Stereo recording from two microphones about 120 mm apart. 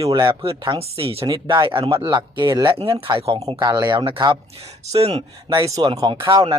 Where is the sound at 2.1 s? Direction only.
40° right (ahead or behind).